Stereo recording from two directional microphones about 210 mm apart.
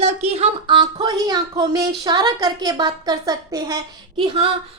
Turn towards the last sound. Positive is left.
turn(degrees=-25)  # may be behind; listen again after turning